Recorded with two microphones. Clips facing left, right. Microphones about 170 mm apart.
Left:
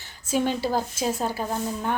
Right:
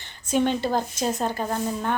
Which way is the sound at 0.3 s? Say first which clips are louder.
Right 2 dB; 5° left (ahead or behind).